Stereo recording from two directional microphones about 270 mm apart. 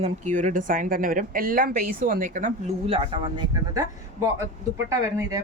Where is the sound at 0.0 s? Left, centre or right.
Right.